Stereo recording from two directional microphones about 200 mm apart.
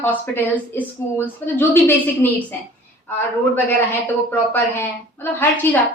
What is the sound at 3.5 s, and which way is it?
A woman's voice, 10° left (ahead or behind).